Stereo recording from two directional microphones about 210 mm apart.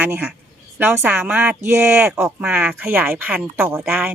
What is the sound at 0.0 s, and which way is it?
Speech, 10° right (ahead or behind).